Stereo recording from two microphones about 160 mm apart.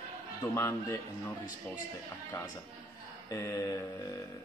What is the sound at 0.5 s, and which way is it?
Speech, 15° left (ahead or behind).